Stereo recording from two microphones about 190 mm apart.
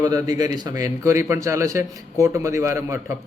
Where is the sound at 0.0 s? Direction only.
20° right (ahead or behind).